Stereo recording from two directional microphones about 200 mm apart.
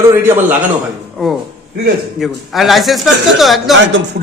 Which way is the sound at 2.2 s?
Centre (ahead or behind).